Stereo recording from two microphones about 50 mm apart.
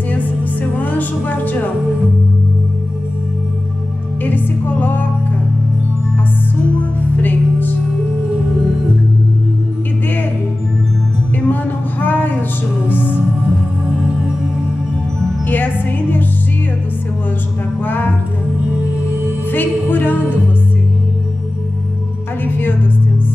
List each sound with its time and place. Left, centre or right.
0.1 s music: left
4.2 s music: left
6.8 s music: left
11.4 s a sound: left
15.4 s music: left
17.8 s music: left
19.5 s music: left
22.4 s music: left